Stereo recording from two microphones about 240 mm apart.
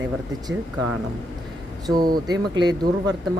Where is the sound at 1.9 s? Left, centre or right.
Centre.